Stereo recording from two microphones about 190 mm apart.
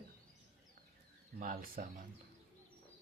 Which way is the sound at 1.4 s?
45° right (ahead or behind).